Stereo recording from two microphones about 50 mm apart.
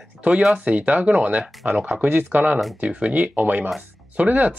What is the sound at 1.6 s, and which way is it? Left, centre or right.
Speech, right.